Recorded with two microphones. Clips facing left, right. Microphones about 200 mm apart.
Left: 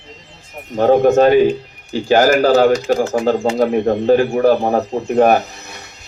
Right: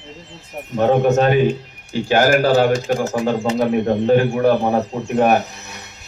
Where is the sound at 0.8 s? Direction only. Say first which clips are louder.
Left 4 dB; 35° left (ahead or behind).